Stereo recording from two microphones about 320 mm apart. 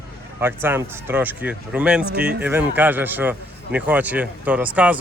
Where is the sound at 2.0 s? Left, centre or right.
Right.